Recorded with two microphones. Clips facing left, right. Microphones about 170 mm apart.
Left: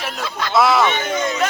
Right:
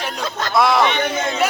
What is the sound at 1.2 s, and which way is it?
Speech, 55° right (ahead or behind).